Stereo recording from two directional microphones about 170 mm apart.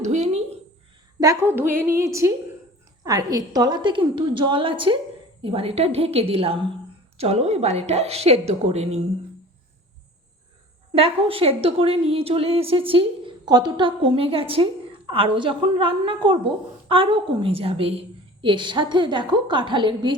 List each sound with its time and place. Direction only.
0.0 s a sound: 45° right (ahead or behind)
1.2 s a woman's voice: 15° right (ahead or behind); by 9.0 s 40° right (ahead or behind)
10.9 s a woman's voice: 35° right (ahead or behind)